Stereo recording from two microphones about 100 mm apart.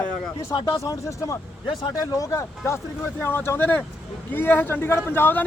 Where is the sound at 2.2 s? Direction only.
30° left (ahead or behind).